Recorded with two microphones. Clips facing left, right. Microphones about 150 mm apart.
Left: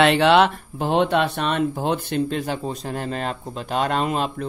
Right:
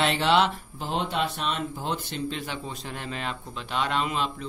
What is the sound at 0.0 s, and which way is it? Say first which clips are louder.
Speech: left 7 dB; 70° left (ahead or behind).